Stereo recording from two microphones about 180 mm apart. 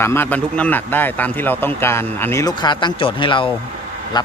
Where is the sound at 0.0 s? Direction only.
10° left (ahead or behind).